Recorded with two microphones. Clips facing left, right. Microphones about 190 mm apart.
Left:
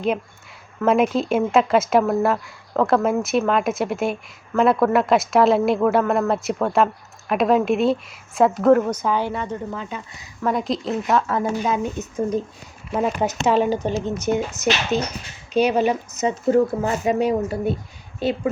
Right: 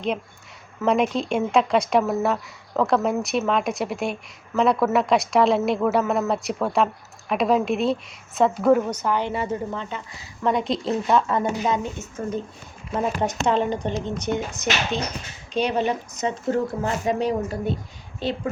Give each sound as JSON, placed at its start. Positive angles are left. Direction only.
{"t": 0.8, "sound": "speech", "side_deg": 5}
{"t": 8.9, "sound": "speech", "side_deg": 10}
{"t": 9.3, "sound": "speech", "side_deg": -5}
{"t": 13.2, "sound": "speech", "side_deg": 5}